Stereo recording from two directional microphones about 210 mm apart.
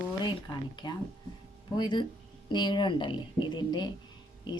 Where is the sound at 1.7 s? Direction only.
20° left (ahead or behind).